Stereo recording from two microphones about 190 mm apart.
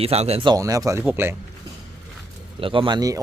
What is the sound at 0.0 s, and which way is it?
Speech, 30° right (ahead or behind).